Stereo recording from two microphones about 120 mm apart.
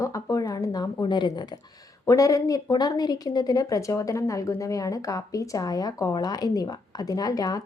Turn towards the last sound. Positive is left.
turn(degrees=30)  # may be behind; listen again after turning